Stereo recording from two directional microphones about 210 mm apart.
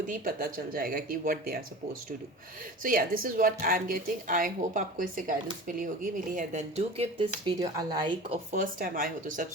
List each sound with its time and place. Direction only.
0.1 s speech: 45° right (ahead or behind); by 8.4 s 20° right (ahead or behind)
8.5 s speech: 40° right (ahead or behind)